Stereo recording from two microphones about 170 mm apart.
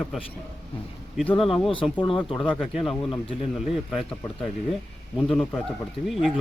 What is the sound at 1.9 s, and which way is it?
Speech, 30° left (ahead or behind).